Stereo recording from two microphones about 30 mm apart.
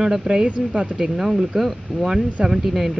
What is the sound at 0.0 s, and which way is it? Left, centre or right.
Speech, centre.